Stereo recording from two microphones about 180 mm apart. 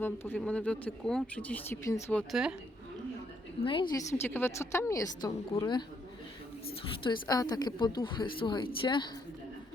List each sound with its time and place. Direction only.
0.0 s speech: 10° left (ahead or behind)
2.3 s a woman's voice: 5° right (ahead or behind)
3.6 s a woman's voice: 30° left (ahead or behind)
4.1 s a woman's voice: 15° left (ahead or behind)
7.0 s a woman's voice: 25° left (ahead or behind)